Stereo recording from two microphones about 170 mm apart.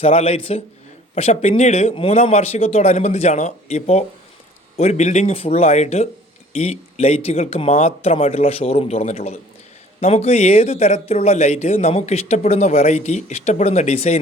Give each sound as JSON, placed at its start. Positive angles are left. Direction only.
{"t": 0.0, "sound": "speech", "side_deg": 35}